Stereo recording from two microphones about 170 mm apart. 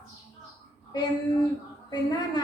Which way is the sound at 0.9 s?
25° left (ahead or behind).